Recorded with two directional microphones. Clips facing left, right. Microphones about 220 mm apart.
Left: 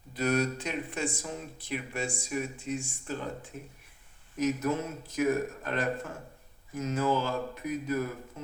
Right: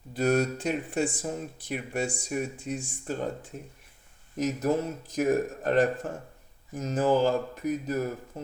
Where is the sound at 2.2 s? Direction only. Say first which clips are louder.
Right 2 dB; 40° right (ahead or behind).